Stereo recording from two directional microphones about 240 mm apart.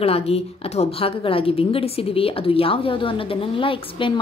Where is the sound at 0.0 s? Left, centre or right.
Left.